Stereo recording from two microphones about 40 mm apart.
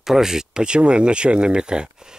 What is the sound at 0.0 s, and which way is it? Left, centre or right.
Speech, centre.